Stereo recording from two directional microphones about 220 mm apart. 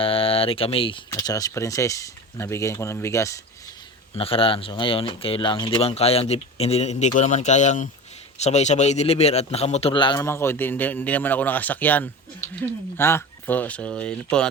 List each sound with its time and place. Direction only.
0.0 s a man's voice: 25° left (ahead or behind)
4.1 s a man's voice: 25° left (ahead or behind); by 14.4 s 5° left (ahead or behind)